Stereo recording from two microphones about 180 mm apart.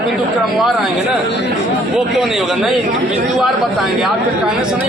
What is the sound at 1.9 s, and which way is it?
A man's voice, centre (ahead or behind).